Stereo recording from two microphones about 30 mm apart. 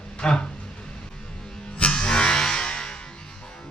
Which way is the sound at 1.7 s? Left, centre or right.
Left.